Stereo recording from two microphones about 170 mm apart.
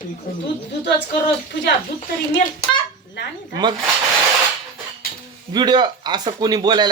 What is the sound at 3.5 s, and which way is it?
Speech, 25° right (ahead or behind).